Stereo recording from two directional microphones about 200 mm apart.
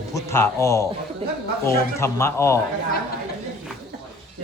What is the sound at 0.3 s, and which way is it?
Speech, 15° left (ahead or behind).